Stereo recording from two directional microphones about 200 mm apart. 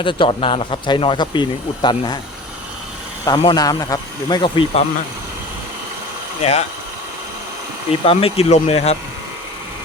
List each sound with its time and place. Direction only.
0.0 s speech: 25° left (ahead or behind)
3.2 s speech: 20° left (ahead or behind)
6.4 s speech: 30° left (ahead or behind)
8.0 s speech: 30° left (ahead or behind)